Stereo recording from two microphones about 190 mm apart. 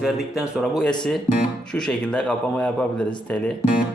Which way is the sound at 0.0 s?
Centre (ahead or behind).